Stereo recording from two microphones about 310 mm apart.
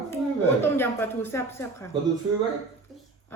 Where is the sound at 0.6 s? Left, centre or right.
Centre.